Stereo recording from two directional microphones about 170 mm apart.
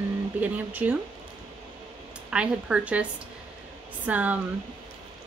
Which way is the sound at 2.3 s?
5° right (ahead or behind).